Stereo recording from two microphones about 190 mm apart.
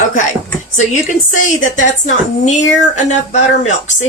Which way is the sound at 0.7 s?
40° left (ahead or behind).